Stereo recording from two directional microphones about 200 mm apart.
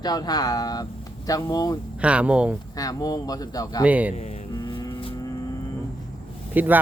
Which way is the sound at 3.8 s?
5° right (ahead or behind).